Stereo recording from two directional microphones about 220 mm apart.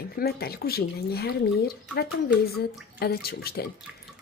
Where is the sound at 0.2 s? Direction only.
45° left (ahead or behind).